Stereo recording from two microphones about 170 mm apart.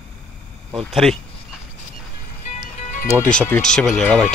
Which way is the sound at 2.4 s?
45° left (ahead or behind).